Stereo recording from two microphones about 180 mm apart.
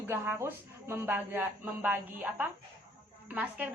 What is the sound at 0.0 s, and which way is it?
Speech, 10° right (ahead or behind).